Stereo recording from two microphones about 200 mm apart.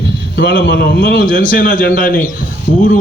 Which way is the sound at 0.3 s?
55° left (ahead or behind).